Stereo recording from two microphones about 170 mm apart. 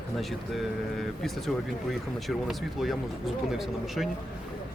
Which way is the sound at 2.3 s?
Centre (ahead or behind).